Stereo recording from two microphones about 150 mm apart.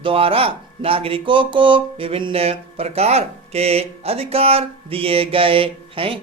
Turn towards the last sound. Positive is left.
turn(degrees=-35)  # may be behind; listen again after turning